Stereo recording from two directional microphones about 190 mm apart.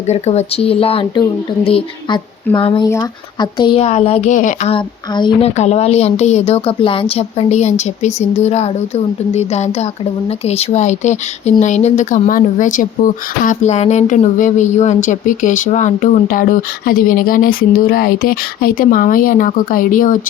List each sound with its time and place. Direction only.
0.1 s speech: 35° left (ahead or behind)
4.7 s a woman's voice: 25° left (ahead or behind); by 20.1 s 45° left (ahead or behind)